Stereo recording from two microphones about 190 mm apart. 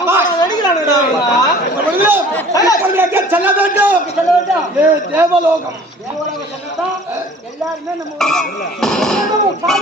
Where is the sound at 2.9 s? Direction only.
10° right (ahead or behind).